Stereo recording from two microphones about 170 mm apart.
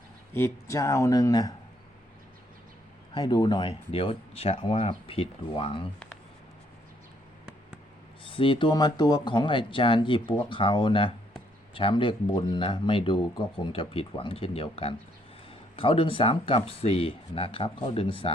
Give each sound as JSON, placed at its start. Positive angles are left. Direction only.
{"t": 0.3, "sound": "speech", "side_deg": 15}
{"t": 3.2, "sound": "speech", "side_deg": 25}
{"t": 8.2, "sound": "speech", "side_deg": 30}